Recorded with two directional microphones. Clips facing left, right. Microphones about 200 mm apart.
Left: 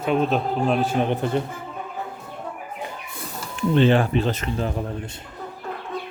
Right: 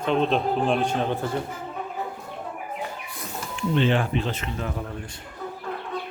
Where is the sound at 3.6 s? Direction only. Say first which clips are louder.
Left 5 dB; 40° left (ahead or behind).